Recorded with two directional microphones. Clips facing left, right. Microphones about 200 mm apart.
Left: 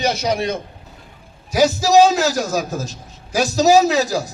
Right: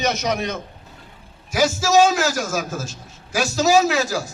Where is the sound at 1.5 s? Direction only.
35° left (ahead or behind).